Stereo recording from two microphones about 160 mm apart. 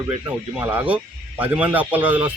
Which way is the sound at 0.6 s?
10° right (ahead or behind).